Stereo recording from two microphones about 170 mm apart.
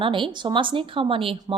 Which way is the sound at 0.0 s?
30° right (ahead or behind).